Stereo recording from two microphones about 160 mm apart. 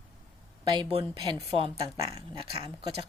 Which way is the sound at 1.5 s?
35° right (ahead or behind).